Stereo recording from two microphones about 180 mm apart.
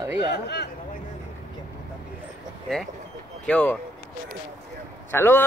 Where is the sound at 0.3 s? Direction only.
65° left (ahead or behind).